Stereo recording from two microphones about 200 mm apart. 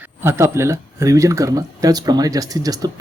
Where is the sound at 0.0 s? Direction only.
10° right (ahead or behind).